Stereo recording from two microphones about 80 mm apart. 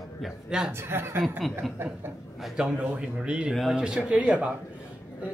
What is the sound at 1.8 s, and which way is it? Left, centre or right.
Chuckle, right.